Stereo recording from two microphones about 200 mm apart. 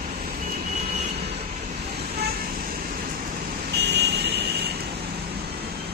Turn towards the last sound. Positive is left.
turn(degrees=-55)  # may be behind; listen again after turning